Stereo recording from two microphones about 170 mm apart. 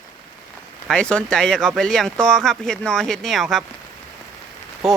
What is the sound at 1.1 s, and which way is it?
Speech, 5° left (ahead or behind).